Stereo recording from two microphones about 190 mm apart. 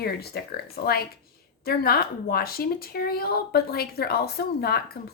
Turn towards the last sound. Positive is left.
turn(degrees=55)  # may be behind; listen again after turning